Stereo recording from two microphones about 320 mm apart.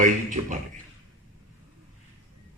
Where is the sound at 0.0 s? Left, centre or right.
Right.